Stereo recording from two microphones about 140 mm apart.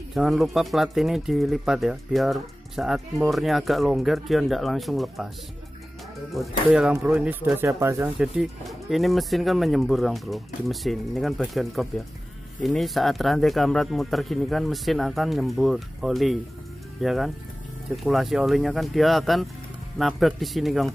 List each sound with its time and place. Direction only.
0.1 s speech: centre (ahead or behind)
6.9 s speech: 10° right (ahead or behind)
8.2 s speech: centre (ahead or behind)